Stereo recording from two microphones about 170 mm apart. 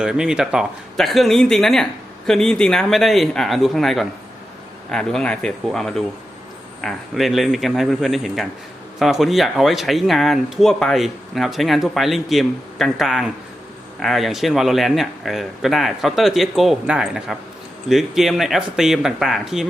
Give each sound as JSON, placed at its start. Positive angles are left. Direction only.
{"t": 0.0, "sound": "speech", "side_deg": -5}